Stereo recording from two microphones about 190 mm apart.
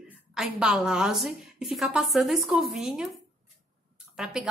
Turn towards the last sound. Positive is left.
turn(degrees=-5)  # may be behind; listen again after turning